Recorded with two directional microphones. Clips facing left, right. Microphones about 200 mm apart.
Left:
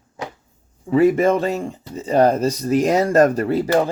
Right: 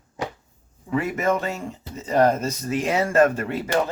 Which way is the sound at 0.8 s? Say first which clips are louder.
Left 8 dB; 30° left (ahead or behind).